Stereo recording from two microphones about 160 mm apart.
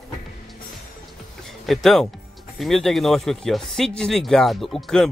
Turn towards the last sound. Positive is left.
turn(degrees=5)  # may be behind; listen again after turning